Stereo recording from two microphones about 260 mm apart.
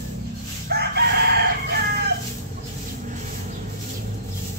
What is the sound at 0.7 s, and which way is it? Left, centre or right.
Crowing, right.